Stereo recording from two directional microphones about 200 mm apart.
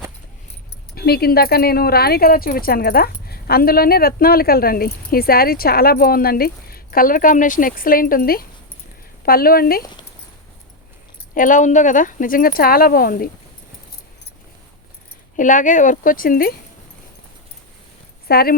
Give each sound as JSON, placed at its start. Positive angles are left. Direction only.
{"t": 0.9, "sound": "speech", "side_deg": 50}
{"t": 11.3, "sound": "speech", "side_deg": 40}
{"t": 15.4, "sound": "speech", "side_deg": 40}
{"t": 18.3, "sound": "speech", "side_deg": 50}